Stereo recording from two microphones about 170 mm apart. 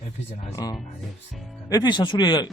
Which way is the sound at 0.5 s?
20° left (ahead or behind).